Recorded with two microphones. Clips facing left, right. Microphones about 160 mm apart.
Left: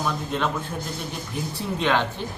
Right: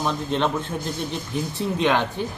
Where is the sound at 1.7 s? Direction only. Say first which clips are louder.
Right 2 dB; 15° right (ahead or behind).